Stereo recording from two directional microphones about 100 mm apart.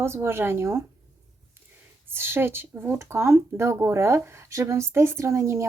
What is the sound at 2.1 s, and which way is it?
Speech, 25° right (ahead or behind).